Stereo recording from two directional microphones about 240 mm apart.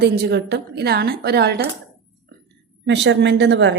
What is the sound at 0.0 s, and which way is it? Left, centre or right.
A woman's voice, right.